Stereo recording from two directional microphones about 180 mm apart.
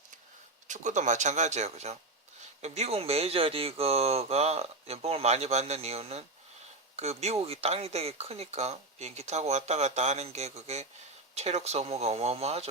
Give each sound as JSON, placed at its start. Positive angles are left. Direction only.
{"t": 0.7, "sound": "speech", "side_deg": -40}